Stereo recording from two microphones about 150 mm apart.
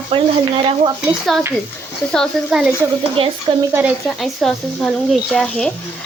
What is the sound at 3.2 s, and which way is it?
Speech, 40° right (ahead or behind).